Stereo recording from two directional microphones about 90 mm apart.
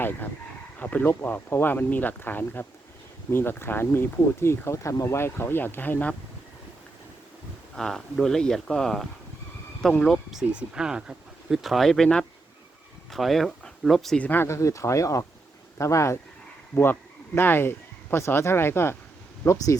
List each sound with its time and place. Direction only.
0.8 s speech: 20° left (ahead or behind)
7.8 s speech: 5° left (ahead or behind)
10.4 s speech: 10° right (ahead or behind)
14.2 s speech: 20° left (ahead or behind)
14.4 s speech: 35° left (ahead or behind)